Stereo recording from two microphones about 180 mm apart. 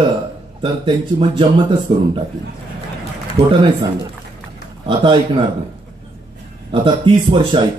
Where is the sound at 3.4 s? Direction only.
65° right (ahead or behind).